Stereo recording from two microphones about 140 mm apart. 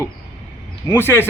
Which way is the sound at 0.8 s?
15° left (ahead or behind).